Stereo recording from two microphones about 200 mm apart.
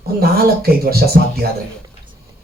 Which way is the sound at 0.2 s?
50° right (ahead or behind).